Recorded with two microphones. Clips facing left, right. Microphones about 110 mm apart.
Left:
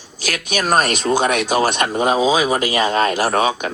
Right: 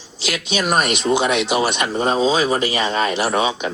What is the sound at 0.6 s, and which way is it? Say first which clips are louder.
Speech: left 2 dB; 40° left (ahead or behind).